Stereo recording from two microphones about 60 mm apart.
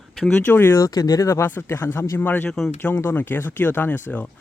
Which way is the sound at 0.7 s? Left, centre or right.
Left.